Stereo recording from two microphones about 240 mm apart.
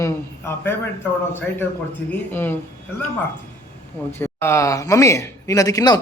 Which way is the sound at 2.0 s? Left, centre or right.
Centre.